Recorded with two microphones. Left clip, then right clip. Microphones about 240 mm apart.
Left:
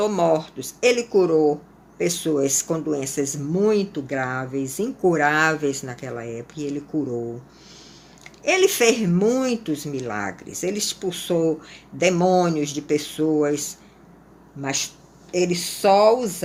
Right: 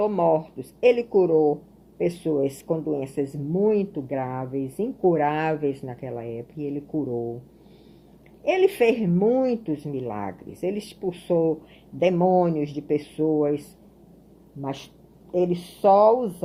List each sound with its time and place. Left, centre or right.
0.0 s speech: centre
8.4 s speech: centre
14.6 s speech: centre